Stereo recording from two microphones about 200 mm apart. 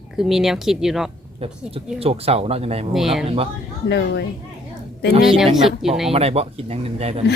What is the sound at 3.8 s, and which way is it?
Speech, 60° left (ahead or behind).